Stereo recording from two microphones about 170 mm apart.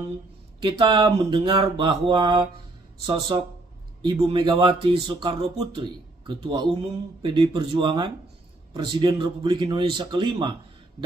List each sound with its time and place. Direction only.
0.6 s speech: 30° right (ahead or behind)